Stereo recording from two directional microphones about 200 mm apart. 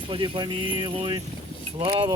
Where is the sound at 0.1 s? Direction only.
25° right (ahead or behind).